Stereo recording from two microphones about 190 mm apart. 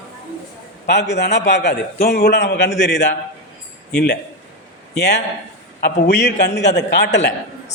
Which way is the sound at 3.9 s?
60° left (ahead or behind).